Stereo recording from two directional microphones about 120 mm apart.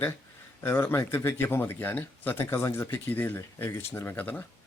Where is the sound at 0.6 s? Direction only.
20° left (ahead or behind).